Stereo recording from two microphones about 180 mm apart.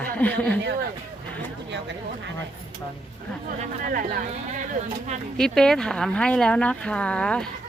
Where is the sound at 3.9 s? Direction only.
55° right (ahead or behind).